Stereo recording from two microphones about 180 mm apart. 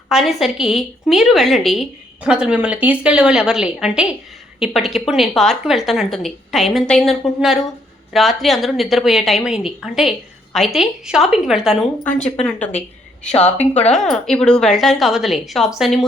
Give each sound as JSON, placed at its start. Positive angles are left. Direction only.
{"t": 0.1, "sound": "a woman's voice", "side_deg": 0}
{"t": 13.2, "sound": "a woman's voice", "side_deg": 40}
{"t": 13.9, "sound": "a woman's voice", "side_deg": 5}